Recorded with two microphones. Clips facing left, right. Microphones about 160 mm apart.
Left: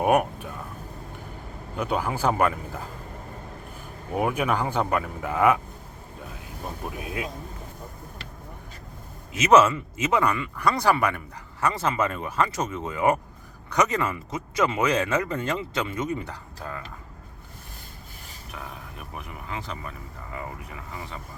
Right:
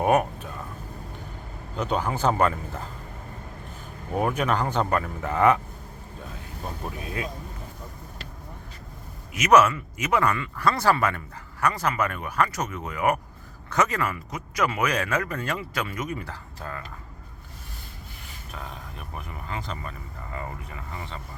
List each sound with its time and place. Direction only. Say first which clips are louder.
0.0 s speech: even; 10° left (ahead or behind)
1.7 s speech: even; 10° left (ahead or behind)
4.2 s speech: even; 10° left (ahead or behind)
6.8 s speech: even; 5° left (ahead or behind)
9.3 s speech: left 1 dB; 25° left (ahead or behind)
11.6 s speech: even; 25° left (ahead or behind)
18.5 s speech: even; 5° left (ahead or behind)